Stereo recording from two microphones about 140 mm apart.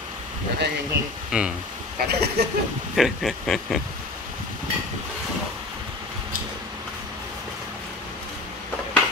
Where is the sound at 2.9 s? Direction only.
Centre (ahead or behind).